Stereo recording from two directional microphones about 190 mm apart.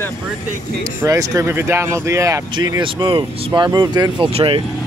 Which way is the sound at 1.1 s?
15° right (ahead or behind).